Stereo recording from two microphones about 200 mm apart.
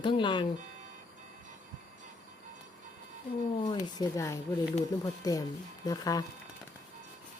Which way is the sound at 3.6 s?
20° left (ahead or behind).